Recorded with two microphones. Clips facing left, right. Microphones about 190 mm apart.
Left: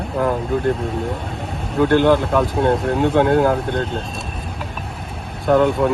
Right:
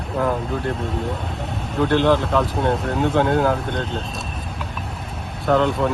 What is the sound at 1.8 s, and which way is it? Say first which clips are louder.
Speech: left 3 dB; 5° left (ahead or behind).